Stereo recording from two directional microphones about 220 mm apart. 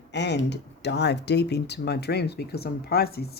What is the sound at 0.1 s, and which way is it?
Speech, 50° left (ahead or behind).